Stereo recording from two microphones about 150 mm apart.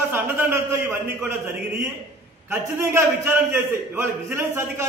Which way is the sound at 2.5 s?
15° right (ahead or behind).